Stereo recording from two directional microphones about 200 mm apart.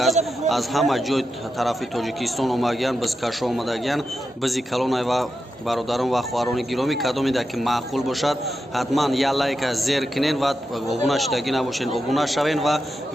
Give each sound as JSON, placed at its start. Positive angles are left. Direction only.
{"t": 0.4, "sound": "a man's voice", "side_deg": 0}